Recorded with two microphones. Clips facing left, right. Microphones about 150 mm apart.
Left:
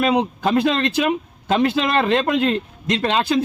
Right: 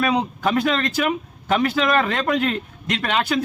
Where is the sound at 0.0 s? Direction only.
25° left (ahead or behind).